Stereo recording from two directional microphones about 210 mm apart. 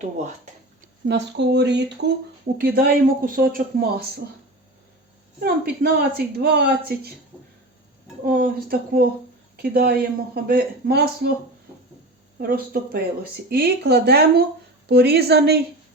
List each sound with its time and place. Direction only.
1.0 s speech: 55° right (ahead or behind)
5.4 s speech: 50° right (ahead or behind)
8.2 s speech: 45° right (ahead or behind)
12.4 s speech: 45° right (ahead or behind)